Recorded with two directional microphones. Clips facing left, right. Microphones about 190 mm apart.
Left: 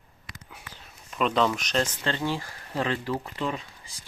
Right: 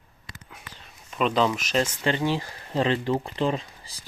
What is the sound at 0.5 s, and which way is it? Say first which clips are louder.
Speech: even; 5° left (ahead or behind).